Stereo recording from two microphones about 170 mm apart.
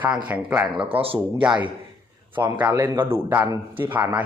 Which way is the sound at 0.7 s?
35° right (ahead or behind).